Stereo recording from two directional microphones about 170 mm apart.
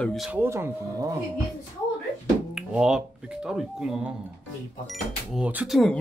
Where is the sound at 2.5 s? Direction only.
5° right (ahead or behind).